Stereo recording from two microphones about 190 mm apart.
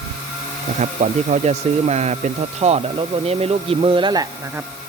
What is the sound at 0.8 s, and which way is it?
Speech, 35° right (ahead or behind).